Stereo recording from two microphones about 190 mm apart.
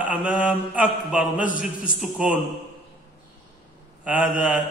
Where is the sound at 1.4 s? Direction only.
45° left (ahead or behind).